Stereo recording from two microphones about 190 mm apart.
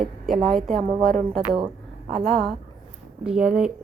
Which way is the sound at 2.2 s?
Centre (ahead or behind).